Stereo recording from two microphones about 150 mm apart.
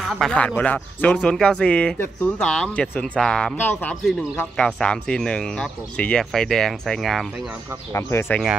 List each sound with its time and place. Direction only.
0.2 s speech: 5° left (ahead or behind)
7.9 s speech: 15° left (ahead or behind)